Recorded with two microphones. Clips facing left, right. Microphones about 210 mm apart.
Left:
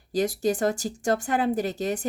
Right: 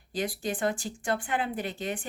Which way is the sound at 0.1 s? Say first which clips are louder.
Left 8 dB; 40° left (ahead or behind).